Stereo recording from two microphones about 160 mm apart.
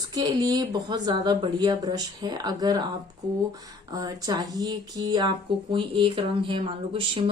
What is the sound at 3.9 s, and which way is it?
Speech, 25° right (ahead or behind).